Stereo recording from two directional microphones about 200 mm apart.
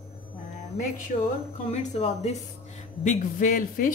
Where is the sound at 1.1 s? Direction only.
40° left (ahead or behind).